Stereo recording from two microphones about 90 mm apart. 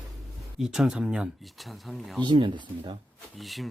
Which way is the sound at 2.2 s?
60° right (ahead or behind).